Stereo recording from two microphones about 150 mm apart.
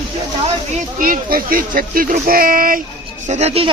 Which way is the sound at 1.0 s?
70° right (ahead or behind).